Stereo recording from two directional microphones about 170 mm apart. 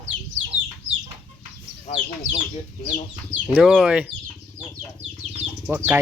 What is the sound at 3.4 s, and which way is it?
Speech, 5° right (ahead or behind).